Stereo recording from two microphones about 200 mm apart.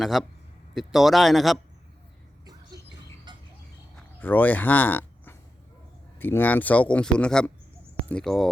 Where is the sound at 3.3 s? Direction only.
20° right (ahead or behind).